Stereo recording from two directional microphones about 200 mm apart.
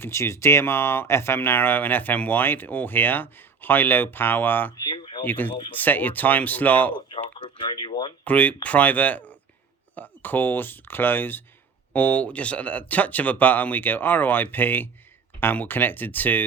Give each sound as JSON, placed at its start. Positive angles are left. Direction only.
{"t": 0.0, "sound": "speech", "side_deg": 15}
{"t": 4.9, "sound": "a sound", "side_deg": 25}
{"t": 5.2, "sound": "speech", "side_deg": 10}
{"t": 7.3, "sound": "speech", "side_deg": 25}
{"t": 8.2, "sound": "speech", "side_deg": 5}